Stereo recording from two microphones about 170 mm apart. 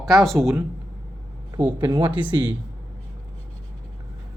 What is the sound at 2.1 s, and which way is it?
Speech, 10° right (ahead or behind).